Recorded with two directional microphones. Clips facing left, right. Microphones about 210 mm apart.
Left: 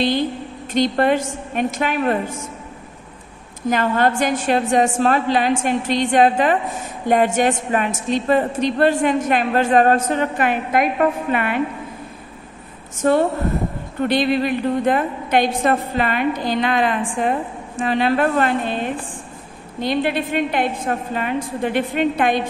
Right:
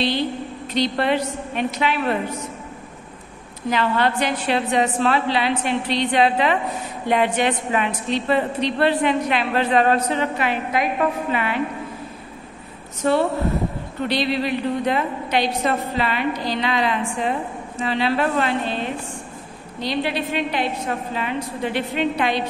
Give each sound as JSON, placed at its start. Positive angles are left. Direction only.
{"t": 0.7, "sound": "a woman's voice", "side_deg": 50}
{"t": 3.7, "sound": "a woman's voice", "side_deg": 45}
{"t": 12.9, "sound": "a woman's voice", "side_deg": 50}